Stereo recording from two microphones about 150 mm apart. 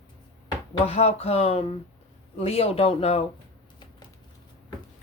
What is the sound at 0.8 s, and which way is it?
Speech, 45° left (ahead or behind).